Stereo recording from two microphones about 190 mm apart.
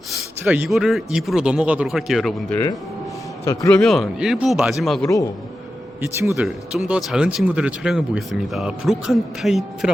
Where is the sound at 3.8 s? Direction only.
Centre (ahead or behind).